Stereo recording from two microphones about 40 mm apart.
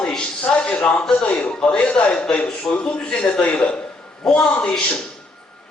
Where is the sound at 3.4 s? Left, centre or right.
Left.